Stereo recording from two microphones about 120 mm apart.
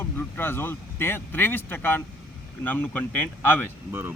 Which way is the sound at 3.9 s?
20° right (ahead or behind).